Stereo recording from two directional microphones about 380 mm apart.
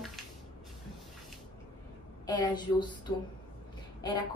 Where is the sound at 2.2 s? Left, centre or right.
Centre.